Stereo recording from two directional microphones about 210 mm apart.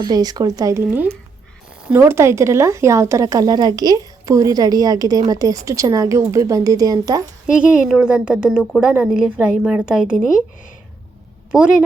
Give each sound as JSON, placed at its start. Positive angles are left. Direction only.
{"t": 0.0, "sound": "speech", "side_deg": -20}
{"t": 7.5, "sound": "a woman's voice", "side_deg": -5}